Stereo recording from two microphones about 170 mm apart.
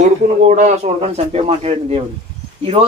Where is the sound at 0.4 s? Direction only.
45° right (ahead or behind).